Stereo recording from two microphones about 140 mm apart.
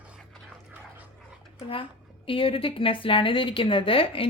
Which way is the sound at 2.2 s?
40° left (ahead or behind).